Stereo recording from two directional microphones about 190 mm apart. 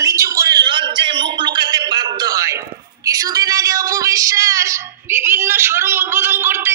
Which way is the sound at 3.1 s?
20° right (ahead or behind).